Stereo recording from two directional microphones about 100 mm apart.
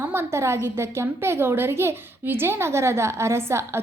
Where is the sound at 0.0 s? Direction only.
25° right (ahead or behind).